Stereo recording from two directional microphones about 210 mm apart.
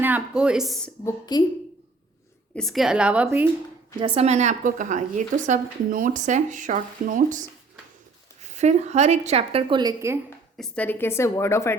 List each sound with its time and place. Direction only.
0.0 s a woman's voice: 5° right (ahead or behind)
1.0 s a woman's voice: 20° left (ahead or behind)
2.6 s a woman's voice: centre (ahead or behind)
4.0 s a woman's voice: 30° right (ahead or behind)
10.2 s a woman's voice: 10° left (ahead or behind)